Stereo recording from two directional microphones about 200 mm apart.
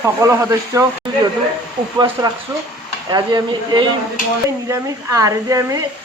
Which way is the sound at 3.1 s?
20° right (ahead or behind).